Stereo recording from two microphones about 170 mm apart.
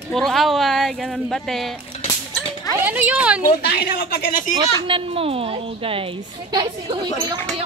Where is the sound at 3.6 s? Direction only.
70° left (ahead or behind); by 4.5 s 55° left (ahead or behind).